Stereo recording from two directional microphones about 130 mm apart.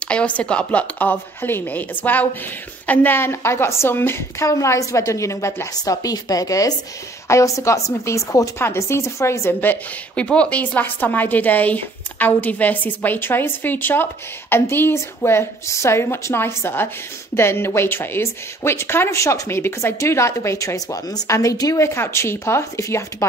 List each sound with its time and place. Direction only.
0.0 s a woman's voice: 10° left (ahead or behind)